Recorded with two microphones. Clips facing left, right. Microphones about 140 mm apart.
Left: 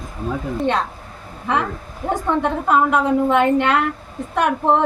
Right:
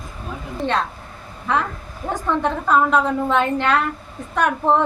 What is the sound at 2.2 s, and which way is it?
A woman's voice, 15° left (ahead or behind).